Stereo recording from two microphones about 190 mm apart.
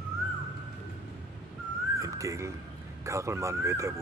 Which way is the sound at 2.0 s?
15° right (ahead or behind).